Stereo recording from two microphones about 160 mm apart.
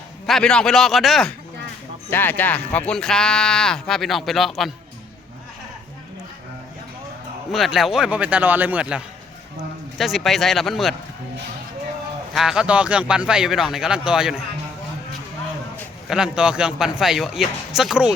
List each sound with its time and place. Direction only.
0.3 s speech: 5° left (ahead or behind)
2.0 s speech: 10° left (ahead or behind)
7.5 s a man's voice: centre (ahead or behind)
12.3 s speech: centre (ahead or behind)
16.0 s speech: 5° right (ahead or behind)